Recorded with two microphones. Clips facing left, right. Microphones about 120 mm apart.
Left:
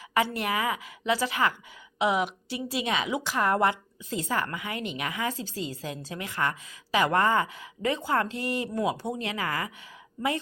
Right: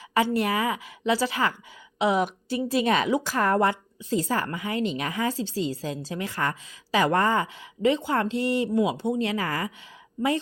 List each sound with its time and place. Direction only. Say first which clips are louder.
0.1 s a woman's voice: right 4 dB; 30° right (ahead or behind)